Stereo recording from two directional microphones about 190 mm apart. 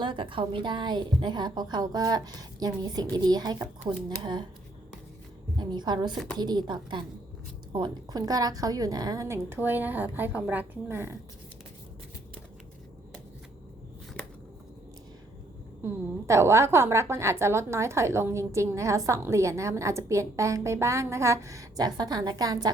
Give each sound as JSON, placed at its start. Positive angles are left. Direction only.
{"t": 0.0, "sound": "a woman's voice", "side_deg": -25}
{"t": 5.5, "sound": "a woman's voice", "side_deg": -20}
{"t": 15.8, "sound": "a woman's voice", "side_deg": -15}